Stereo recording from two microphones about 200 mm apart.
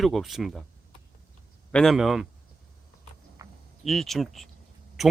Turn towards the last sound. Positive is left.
turn(degrees=0)  # may be behind; listen again after turning